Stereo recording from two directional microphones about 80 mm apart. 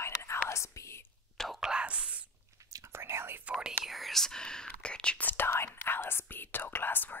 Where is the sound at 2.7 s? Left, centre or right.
Right.